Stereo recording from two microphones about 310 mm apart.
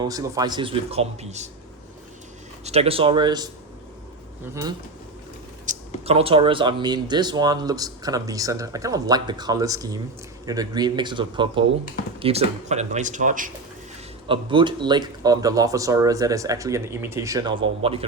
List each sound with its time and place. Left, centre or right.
0.0 s speech: centre
2.6 s speech: centre
5.6 s speech: centre